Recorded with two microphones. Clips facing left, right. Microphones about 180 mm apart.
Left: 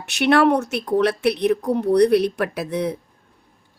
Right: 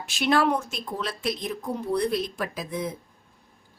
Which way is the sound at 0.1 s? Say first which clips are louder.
Left 7 dB; 70° left (ahead or behind).